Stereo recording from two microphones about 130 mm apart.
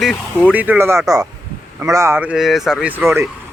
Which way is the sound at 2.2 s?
5° right (ahead or behind).